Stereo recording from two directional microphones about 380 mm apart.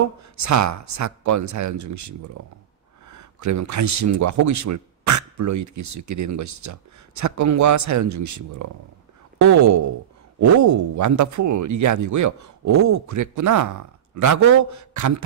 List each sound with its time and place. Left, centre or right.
0.0 s speech: right